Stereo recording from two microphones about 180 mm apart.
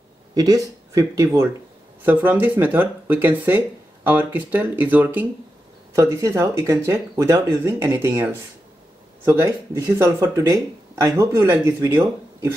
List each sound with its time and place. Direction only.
0.3 s speech: 20° right (ahead or behind)